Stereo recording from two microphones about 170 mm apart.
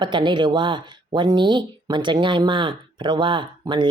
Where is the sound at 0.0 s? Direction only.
30° right (ahead or behind).